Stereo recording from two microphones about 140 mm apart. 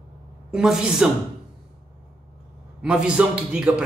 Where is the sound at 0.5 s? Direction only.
5° right (ahead or behind).